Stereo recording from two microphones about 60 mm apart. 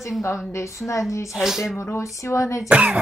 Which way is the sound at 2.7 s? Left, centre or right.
Centre.